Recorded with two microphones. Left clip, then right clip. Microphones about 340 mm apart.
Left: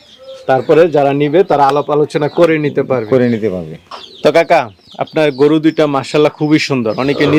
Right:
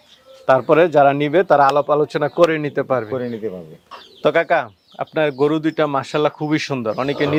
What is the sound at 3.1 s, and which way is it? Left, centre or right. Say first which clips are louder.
Speech: left 12 dB; left.